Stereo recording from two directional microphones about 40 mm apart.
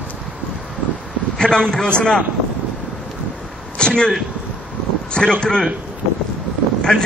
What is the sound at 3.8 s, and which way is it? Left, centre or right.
Speech, left.